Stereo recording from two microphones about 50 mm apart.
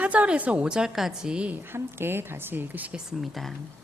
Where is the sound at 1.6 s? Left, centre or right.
Right.